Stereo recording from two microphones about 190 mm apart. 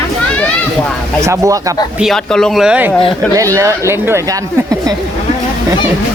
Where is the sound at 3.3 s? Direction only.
15° right (ahead or behind).